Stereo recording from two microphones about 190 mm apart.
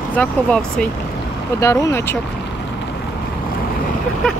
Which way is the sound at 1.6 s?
15° left (ahead or behind).